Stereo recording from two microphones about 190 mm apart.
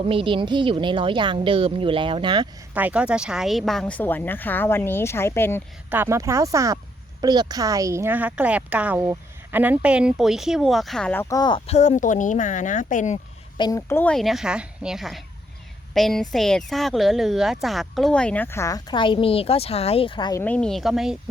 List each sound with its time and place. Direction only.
0.0 s speech: 30° right (ahead or behind)
2.7 s a woman's voice: 5° right (ahead or behind); by 5.6 s 10° left (ahead or behind)
5.9 s a woman's voice: 10° right (ahead or behind); by 13.1 s 40° left (ahead or behind)
13.6 s a woman's voice: 15° left (ahead or behind)
20.4 s a woman's voice: 5° left (ahead or behind)